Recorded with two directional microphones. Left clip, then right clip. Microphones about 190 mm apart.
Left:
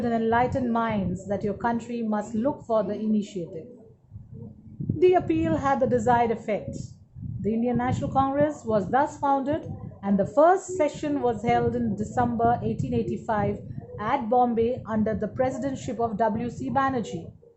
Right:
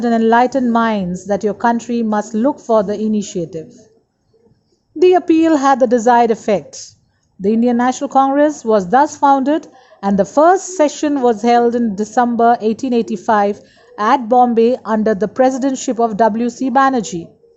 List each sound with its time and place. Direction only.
0.0 s a woman's voice: 45° right (ahead or behind)
4.9 s a woman's voice: 45° right (ahead or behind)